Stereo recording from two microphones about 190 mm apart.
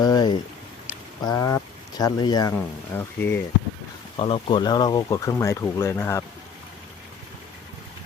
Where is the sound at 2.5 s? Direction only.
10° left (ahead or behind).